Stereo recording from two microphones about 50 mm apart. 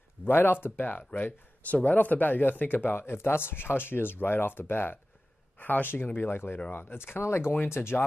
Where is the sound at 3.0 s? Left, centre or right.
Left.